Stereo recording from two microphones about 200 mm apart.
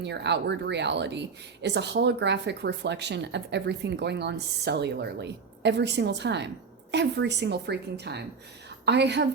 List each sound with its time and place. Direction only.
0.0 s a woman's voice: 60° right (ahead or behind)